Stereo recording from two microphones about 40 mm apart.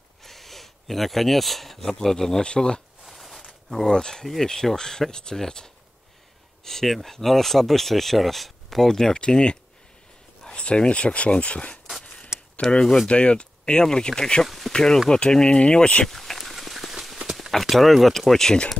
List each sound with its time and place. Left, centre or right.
0.2 s a sound: centre
2.0 s speech: centre
2.4 s speech: left
3.1 s a sound: centre
3.8 s speech: centre
9.1 s speech: left
12.3 s a sound: centre
12.6 s speech: centre
13.1 s speech: left
14.4 s speech: centre
14.7 s speech: centre
16.1 s a sound: centre
17.2 s clip-clop: centre
17.5 s speech: centre